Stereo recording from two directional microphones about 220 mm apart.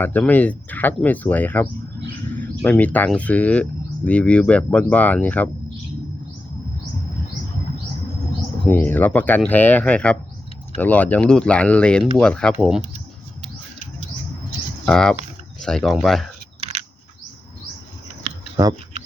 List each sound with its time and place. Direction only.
0.0 s speech: 10° left (ahead or behind)
8.7 s speech: 10° left (ahead or behind)
14.8 s speech: 5° left (ahead or behind)
18.2 s a sound: 25° right (ahead or behind)